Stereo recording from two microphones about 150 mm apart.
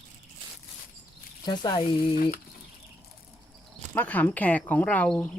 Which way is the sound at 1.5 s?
30° left (ahead or behind).